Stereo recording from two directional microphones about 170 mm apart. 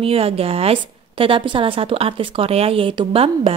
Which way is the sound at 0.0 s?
35° right (ahead or behind).